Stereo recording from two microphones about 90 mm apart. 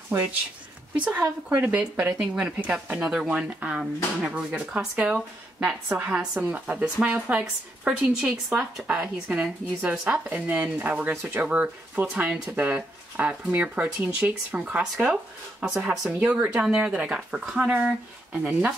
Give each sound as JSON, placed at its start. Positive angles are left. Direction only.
{"t": 0.9, "sound": "a woman's voice", "side_deg": -15}
{"t": 16.2, "sound": "a woman's voice", "side_deg": -20}